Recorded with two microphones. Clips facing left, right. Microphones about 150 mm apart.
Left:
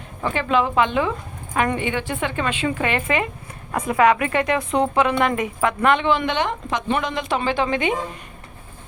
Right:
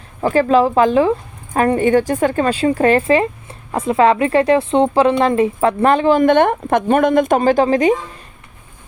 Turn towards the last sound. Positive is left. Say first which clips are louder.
# right 8 dB
turn(degrees=-40)  # may be behind; listen again after turning